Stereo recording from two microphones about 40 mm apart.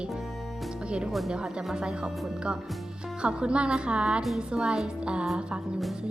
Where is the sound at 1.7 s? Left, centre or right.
Right.